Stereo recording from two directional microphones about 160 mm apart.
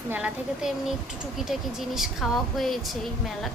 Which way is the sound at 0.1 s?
5° right (ahead or behind).